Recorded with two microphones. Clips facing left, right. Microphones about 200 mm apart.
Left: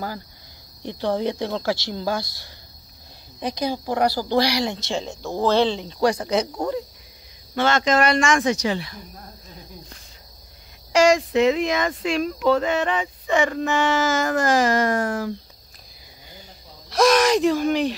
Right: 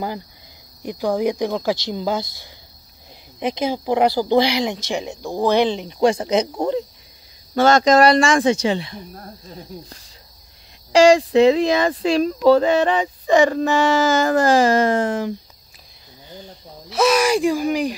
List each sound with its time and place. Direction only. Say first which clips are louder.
0.8 s a woman's voice: right 3 dB; 10° right (ahead or behind)
7.5 s speech: right 6 dB; 40° right (ahead or behind); by 9.0 s 25° right (ahead or behind)
10.9 s speech: right 5 dB; 30° right (ahead or behind)
16.9 s speech: even; 5° right (ahead or behind)